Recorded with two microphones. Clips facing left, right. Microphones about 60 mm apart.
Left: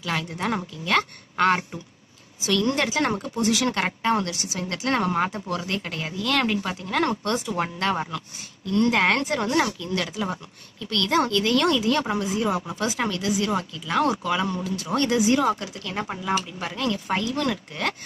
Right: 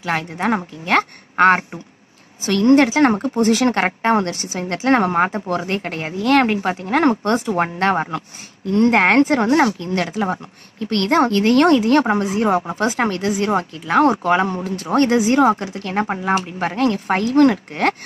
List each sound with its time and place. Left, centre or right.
0.0 s speech: right